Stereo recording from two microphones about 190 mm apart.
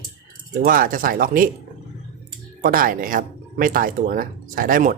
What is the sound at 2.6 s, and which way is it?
Speech, 45° right (ahead or behind).